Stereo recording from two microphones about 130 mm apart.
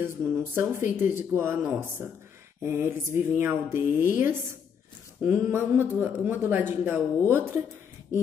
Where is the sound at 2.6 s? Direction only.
20° right (ahead or behind).